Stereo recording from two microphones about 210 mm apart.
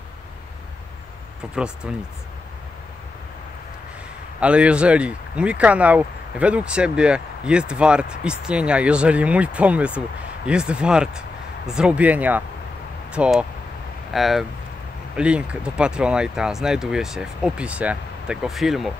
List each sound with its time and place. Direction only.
1.5 s speech: 5° right (ahead or behind)
4.4 s speech: 5° right (ahead or behind)